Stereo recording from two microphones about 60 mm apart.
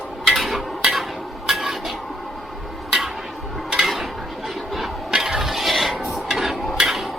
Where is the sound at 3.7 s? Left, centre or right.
Centre.